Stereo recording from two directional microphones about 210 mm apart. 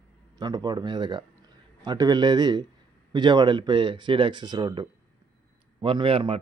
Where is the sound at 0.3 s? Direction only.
20° right (ahead or behind).